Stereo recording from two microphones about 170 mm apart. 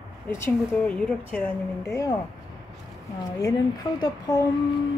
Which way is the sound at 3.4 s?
20° left (ahead or behind).